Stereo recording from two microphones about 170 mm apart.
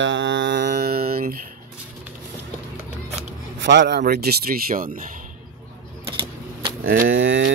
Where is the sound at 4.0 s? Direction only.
65° right (ahead or behind).